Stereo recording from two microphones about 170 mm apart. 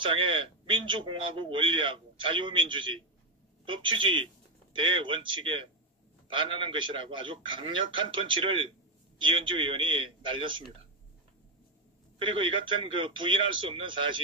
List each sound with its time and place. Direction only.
0.0 s a man's voice: 30° right (ahead or behind)
12.2 s a man's voice: 30° right (ahead or behind)